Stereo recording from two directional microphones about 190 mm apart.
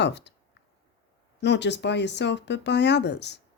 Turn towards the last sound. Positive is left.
turn(degrees=65)  # may be behind; listen again after turning